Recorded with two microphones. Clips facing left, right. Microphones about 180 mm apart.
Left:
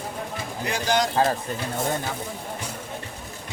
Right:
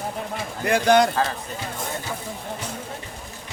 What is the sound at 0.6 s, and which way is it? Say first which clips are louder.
Speech: right 7 dB; 55° right (ahead or behind).